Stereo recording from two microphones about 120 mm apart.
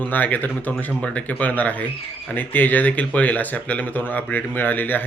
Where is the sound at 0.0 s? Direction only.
15° left (ahead or behind).